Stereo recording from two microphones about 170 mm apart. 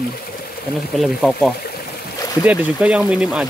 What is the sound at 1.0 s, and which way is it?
Speech, centre (ahead or behind).